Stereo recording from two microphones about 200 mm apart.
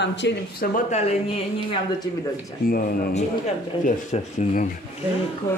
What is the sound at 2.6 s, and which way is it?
Speech, 45° left (ahead or behind).